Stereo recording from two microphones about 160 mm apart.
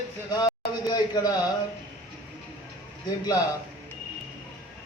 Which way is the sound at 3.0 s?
25° left (ahead or behind).